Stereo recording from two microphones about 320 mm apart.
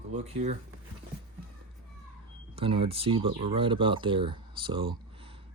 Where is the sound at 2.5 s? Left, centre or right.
Centre.